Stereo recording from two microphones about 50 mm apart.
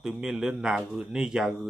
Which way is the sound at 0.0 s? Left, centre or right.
Centre.